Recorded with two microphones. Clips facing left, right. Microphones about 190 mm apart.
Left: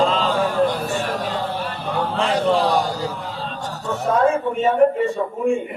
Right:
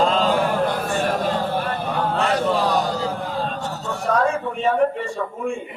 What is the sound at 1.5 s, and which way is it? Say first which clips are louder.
Chant: right 3 dB; 50° right (ahead or behind).